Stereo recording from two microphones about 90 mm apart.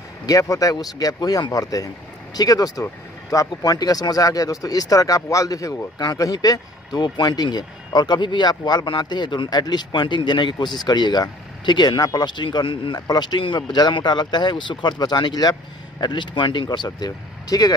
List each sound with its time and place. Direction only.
0.3 s speech: 40° left (ahead or behind); by 12.9 s 70° left (ahead or behind)
12.9 s speech: 45° left (ahead or behind)